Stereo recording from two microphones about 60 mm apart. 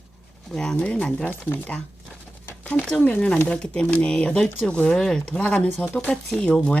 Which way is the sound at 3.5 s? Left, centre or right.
Centre.